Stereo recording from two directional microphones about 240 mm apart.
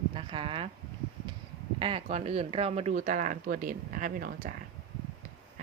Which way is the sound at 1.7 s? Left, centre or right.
Right.